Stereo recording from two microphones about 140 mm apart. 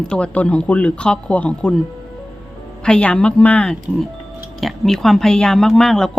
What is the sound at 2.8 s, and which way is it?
A woman's voice, 5° left (ahead or behind).